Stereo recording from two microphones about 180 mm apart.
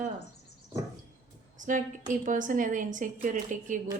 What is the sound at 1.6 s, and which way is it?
A woman's voice, 45° right (ahead or behind).